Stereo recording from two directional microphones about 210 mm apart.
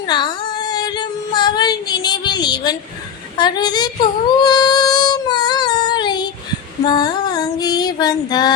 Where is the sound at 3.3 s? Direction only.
20° left (ahead or behind).